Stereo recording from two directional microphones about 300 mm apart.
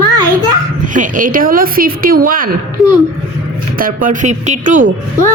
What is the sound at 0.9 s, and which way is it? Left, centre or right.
Speech, right.